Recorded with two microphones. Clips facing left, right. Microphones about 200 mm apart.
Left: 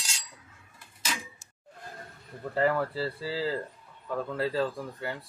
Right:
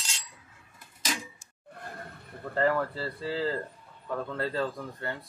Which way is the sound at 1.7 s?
60° right (ahead or behind).